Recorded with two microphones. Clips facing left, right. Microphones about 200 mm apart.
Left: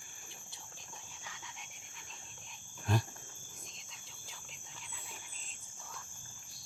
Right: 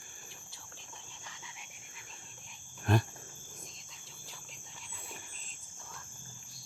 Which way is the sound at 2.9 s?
60° right (ahead or behind).